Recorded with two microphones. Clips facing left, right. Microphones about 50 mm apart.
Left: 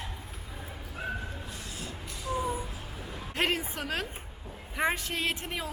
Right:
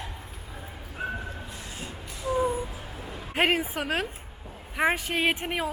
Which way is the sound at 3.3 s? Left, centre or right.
Centre.